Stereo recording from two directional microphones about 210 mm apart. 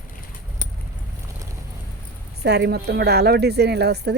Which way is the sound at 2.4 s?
55° right (ahead or behind).